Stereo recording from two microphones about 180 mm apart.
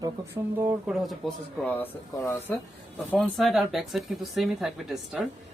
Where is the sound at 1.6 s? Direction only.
10° left (ahead or behind).